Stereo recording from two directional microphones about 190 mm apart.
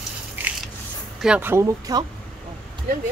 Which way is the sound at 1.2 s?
10° right (ahead or behind).